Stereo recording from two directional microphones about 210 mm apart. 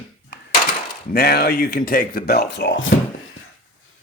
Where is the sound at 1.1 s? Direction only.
50° left (ahead or behind).